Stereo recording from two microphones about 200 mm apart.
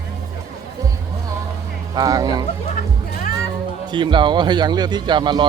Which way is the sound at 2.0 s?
20° right (ahead or behind).